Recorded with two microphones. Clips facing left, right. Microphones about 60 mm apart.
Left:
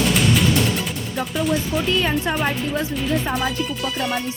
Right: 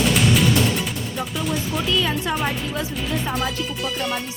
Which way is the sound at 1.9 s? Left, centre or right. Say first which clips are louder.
Left 1 dB; left.